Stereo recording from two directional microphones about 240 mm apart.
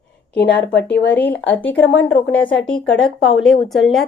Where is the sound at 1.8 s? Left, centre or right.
Left.